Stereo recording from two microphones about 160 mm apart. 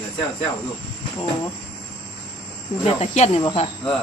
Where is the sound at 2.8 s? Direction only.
40° left (ahead or behind).